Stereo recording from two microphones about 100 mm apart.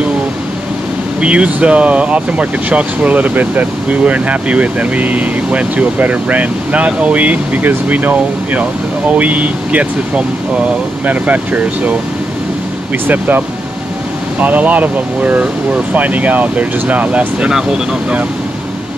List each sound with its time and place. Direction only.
1.2 s speech: 10° right (ahead or behind)
13.0 s speech: 20° right (ahead or behind)
14.4 s speech: 15° right (ahead or behind)